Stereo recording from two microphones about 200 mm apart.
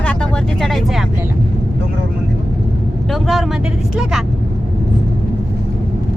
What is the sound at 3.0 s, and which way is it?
Speech, centre (ahead or behind).